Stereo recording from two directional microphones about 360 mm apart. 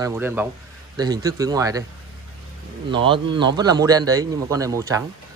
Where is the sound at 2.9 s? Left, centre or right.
Centre.